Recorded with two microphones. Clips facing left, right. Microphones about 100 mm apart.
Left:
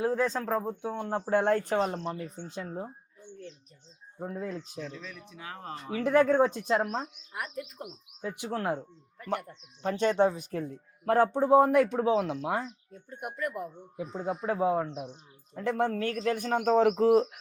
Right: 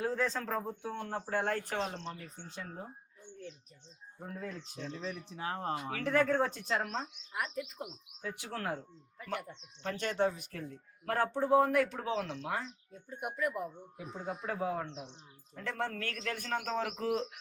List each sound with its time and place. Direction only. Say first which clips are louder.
0.0 s speech: left 5 dB; 15° left (ahead or behind)
4.2 s speech: left 7 dB; 20° left (ahead or behind)
4.8 s speech: even; 30° right (ahead or behind)
6.0 s speech: left 7 dB; 15° left (ahead or behind)
7.3 s speech: even; centre (ahead or behind)
8.2 s speech: left 6 dB; 20° left (ahead or behind)
9.1 s speech: left 6 dB; centre (ahead or behind)
9.8 s speech: left 7 dB; 20° left (ahead or behind)
12.9 s speech: left 1 dB; centre (ahead or behind)
14.1 s speech: left 7 dB; 20° left (ahead or behind)